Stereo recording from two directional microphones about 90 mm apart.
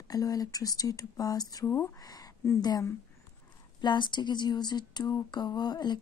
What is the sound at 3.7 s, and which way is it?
Speech, 55° left (ahead or behind).